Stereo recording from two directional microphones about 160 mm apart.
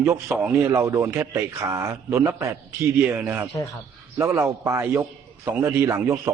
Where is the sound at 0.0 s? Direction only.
15° right (ahead or behind).